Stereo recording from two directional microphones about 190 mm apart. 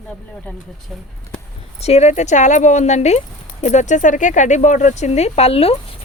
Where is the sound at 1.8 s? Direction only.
35° left (ahead or behind).